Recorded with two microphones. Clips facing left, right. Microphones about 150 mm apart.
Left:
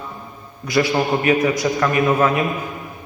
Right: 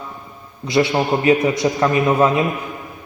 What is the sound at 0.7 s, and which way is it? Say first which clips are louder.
A man's voice: right 1 dB; 25° right (ahead or behind).